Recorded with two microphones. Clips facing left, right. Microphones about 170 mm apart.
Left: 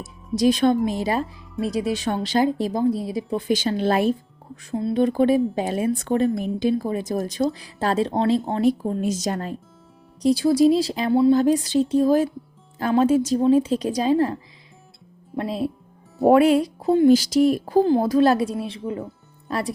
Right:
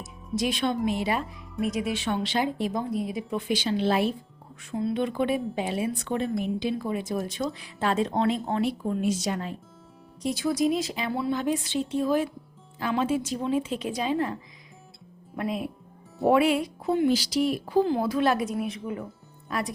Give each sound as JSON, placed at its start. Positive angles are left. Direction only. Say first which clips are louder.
{"t": 0.3, "sound": "speech", "louder": "left 8 dB", "side_deg": 40}
{"t": 4.7, "sound": "speech", "louder": "left 6 dB", "side_deg": 35}
{"t": 15.4, "sound": "speech", "louder": "left 5 dB", "side_deg": 30}